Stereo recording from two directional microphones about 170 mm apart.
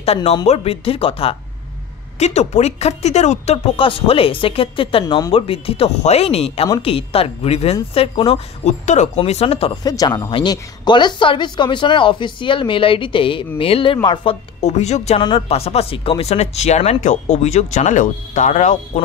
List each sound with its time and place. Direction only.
0.0 s speech: 35° left (ahead or behind)
9.8 s a woman's voice: 20° left (ahead or behind); by 19.0 s 45° left (ahead or behind)